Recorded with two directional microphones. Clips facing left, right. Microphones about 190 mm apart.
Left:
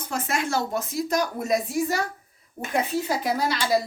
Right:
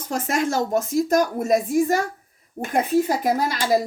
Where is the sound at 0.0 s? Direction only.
45° right (ahead or behind).